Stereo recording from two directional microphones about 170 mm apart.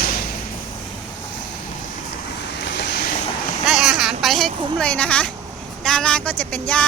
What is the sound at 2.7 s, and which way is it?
Boat, 85° left.